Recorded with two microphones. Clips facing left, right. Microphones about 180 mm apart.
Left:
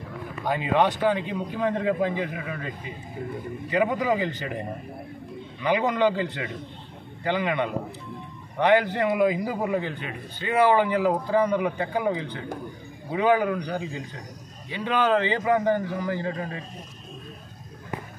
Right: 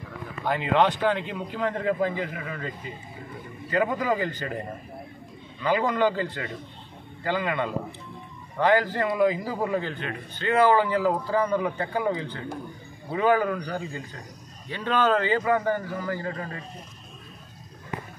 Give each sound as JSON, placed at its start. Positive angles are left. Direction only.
{"t": 1.0, "sound": "speech", "side_deg": 15}
{"t": 3.7, "sound": "a man's voice", "side_deg": 15}